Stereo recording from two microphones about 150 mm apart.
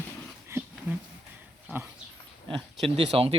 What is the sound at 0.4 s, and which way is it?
Dog, 15° right (ahead or behind).